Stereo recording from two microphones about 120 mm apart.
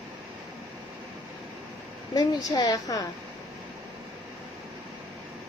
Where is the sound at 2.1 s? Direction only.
30° left (ahead or behind).